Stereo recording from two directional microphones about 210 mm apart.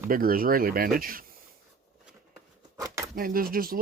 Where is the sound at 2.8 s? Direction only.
15° right (ahead or behind).